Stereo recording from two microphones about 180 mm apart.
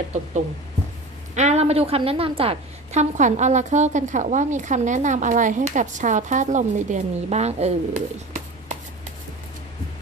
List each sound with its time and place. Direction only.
1.4 s a woman's voice: 40° right (ahead or behind)